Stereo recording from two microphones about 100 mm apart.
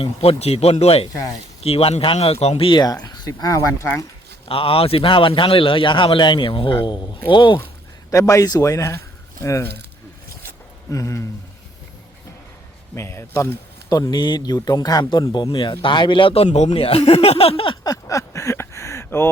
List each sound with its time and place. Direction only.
0.0 s a man's voice: 75° left (ahead or behind)
2.7 s speech: 40° left (ahead or behind)
4.4 s a man's voice: 65° left (ahead or behind)
8.1 s speech: 30° left (ahead or behind)
10.9 s speech: 30° left (ahead or behind)
12.9 s speech: 25° left (ahead or behind)
13.9 s speech: 40° left (ahead or behind); by 17.7 s 70° left (ahead or behind)
17.8 s a sound: 35° left (ahead or behind)